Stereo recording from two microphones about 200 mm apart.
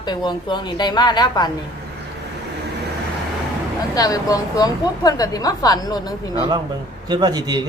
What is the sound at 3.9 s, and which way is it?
A woman's voice, 20° left (ahead or behind).